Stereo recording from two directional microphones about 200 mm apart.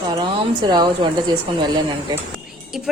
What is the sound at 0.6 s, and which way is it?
A woman's voice, 20° right (ahead or behind).